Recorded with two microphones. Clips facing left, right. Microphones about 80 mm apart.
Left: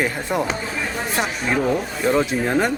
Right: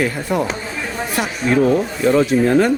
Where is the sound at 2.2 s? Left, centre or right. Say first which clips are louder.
Right 6 dB; centre.